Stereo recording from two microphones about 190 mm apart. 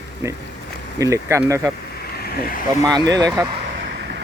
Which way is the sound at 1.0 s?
15° right (ahead or behind).